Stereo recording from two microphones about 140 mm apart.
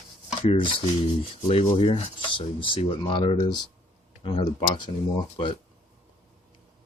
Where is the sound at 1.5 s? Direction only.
45° left (ahead or behind).